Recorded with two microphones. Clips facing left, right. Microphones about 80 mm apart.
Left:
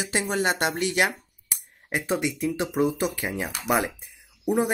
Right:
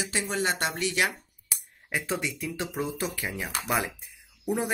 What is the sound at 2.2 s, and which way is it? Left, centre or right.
Speech, left.